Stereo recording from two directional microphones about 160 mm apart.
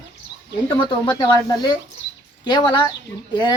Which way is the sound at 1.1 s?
25° left (ahead or behind).